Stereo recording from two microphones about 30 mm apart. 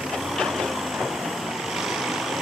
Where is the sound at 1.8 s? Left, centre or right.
Centre.